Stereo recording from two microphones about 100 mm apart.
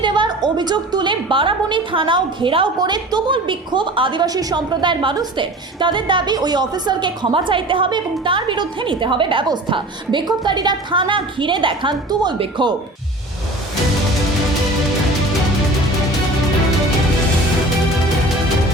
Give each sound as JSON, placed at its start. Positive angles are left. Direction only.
{"t": 0.0, "sound": "a woman's voice", "side_deg": -50}
{"t": 2.7, "sound": "a woman's voice", "side_deg": -45}